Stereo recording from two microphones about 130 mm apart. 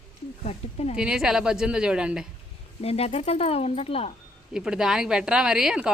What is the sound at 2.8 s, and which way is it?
Speech, 50° left (ahead or behind).